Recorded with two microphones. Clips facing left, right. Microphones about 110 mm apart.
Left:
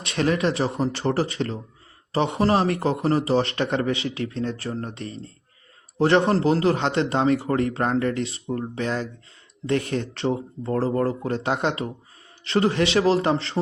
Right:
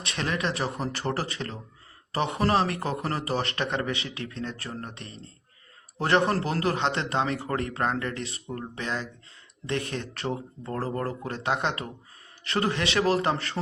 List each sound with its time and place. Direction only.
0.0 s a man's voice: 35° left (ahead or behind)
8.3 s a man's voice: 25° left (ahead or behind)
8.7 s a man's voice: 40° left (ahead or behind)